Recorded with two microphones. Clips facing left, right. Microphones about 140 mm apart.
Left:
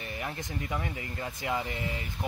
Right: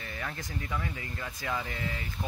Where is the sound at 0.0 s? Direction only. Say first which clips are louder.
Left 2 dB; 20° left (ahead or behind).